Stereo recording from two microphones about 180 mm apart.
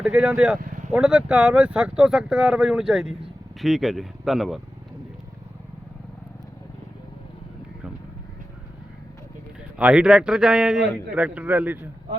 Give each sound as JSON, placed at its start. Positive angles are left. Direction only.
{"t": 0.0, "sound": "speech", "side_deg": -5}
{"t": 0.6, "sound": "vehicle", "side_deg": -45}
{"t": 0.9, "sound": "speech", "side_deg": -5}
{"t": 9.7, "sound": "speech", "side_deg": -5}